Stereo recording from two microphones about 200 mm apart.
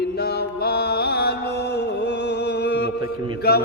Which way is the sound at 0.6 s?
50° left (ahead or behind).